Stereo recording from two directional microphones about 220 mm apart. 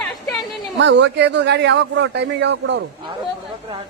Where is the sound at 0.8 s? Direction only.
55° right (ahead or behind).